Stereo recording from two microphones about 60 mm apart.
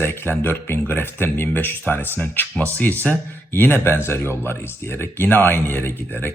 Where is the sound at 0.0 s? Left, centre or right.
Left.